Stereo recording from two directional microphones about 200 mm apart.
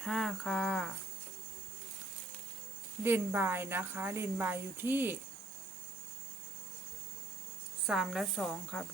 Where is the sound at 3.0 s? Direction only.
10° right (ahead or behind).